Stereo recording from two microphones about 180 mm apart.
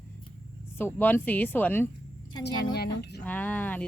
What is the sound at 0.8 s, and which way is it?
Speech, 10° left (ahead or behind).